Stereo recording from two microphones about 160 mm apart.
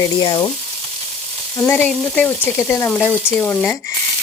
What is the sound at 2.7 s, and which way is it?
Speech, 15° left (ahead or behind).